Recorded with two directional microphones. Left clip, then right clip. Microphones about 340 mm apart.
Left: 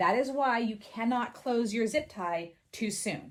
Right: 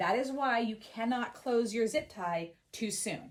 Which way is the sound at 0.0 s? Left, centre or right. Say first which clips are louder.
Left 4 dB; centre.